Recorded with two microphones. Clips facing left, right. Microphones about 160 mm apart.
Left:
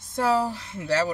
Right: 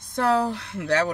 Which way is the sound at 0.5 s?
65° right (ahead or behind).